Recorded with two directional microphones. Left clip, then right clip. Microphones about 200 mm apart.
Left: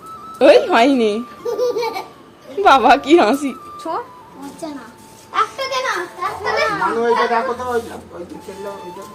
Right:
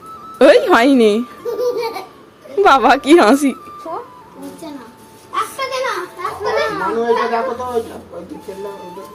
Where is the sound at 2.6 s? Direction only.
35° right (ahead or behind).